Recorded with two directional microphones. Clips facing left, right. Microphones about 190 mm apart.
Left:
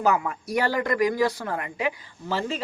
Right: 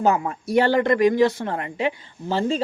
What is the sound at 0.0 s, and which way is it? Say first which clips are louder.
Speech: right 3 dB; 30° right (ahead or behind).